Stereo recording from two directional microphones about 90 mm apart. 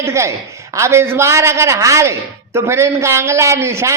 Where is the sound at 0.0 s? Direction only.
35° right (ahead or behind).